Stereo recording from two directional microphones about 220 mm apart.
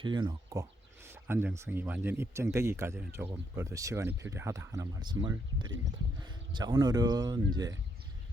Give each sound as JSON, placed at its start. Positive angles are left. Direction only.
{"t": 0.0, "sound": "speech", "side_deg": -20}